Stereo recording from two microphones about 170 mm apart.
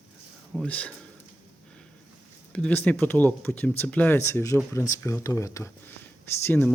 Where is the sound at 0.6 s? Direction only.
10° left (ahead or behind).